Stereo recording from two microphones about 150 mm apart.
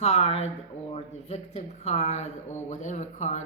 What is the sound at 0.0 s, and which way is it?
Speech, 45° left (ahead or behind).